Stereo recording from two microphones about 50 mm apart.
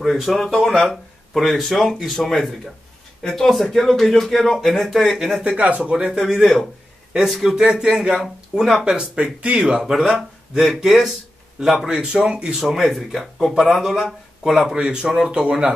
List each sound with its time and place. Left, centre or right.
0.0 s speech: centre
5.4 s speech: right
6.1 s speech: centre
7.6 s speech: centre
9.8 s speech: centre
12.0 s speech: centre
12.6 s speech: centre
14.8 s speech: centre